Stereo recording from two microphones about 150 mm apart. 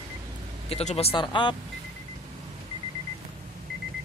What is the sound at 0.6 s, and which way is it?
Speech, 45° left (ahead or behind).